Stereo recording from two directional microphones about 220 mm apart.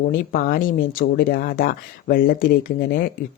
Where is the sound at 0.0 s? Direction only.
45° left (ahead or behind).